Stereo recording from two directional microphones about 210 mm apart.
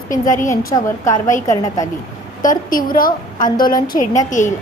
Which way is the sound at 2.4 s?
40° left (ahead or behind).